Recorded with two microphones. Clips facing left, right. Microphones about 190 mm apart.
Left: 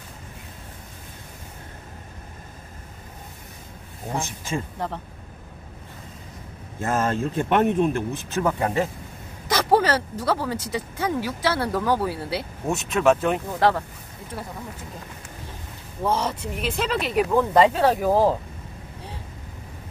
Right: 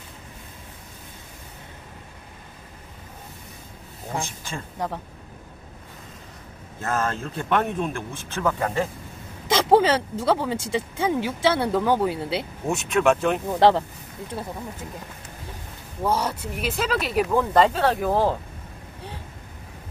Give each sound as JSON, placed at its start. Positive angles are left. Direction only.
{"t": 4.1, "sound": "speech", "side_deg": 0}
{"t": 6.8, "sound": "speech", "side_deg": 15}
{"t": 9.5, "sound": "speech", "side_deg": -25}
{"t": 12.6, "sound": "speech", "side_deg": 0}
{"t": 13.6, "sound": "speech", "side_deg": -25}
{"t": 16.0, "sound": "speech", "side_deg": -5}